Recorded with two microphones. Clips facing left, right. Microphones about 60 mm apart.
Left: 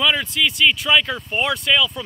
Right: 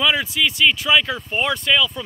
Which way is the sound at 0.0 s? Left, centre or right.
Centre.